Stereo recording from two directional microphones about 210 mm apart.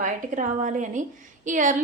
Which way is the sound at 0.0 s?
35° right (ahead or behind).